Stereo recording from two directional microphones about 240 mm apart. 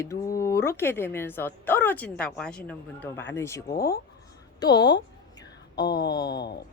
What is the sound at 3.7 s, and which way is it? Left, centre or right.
Speech, left.